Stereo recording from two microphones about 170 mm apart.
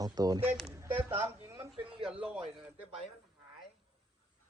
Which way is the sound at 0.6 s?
15° right (ahead or behind).